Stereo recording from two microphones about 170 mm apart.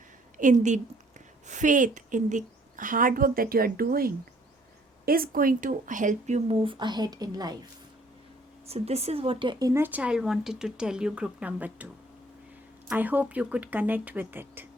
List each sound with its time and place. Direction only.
0.3 s a woman's voice: 45° right (ahead or behind)
6.7 s speech: 25° right (ahead or behind)
8.6 s speech: 35° right (ahead or behind); by 11.9 s 10° right (ahead or behind)
12.9 s speech: 10° right (ahead or behind)